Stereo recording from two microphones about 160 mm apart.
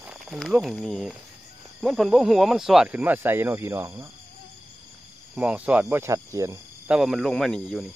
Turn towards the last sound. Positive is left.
turn(degrees=0)  # may be behind; listen again after turning